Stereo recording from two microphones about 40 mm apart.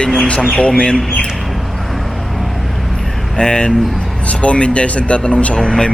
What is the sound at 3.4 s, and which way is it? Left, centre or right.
Speech, centre.